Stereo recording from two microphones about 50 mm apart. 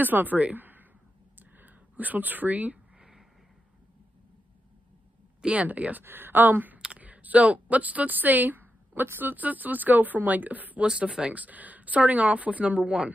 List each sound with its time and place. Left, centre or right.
0.0 s a woman's voice: right
1.4 s a sound: right
3.0 s a sound: centre
5.4 s speech: right
6.0 s a woman's voice: right
10.8 s speech: right